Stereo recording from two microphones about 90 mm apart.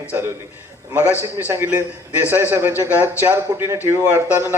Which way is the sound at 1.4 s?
25° right (ahead or behind).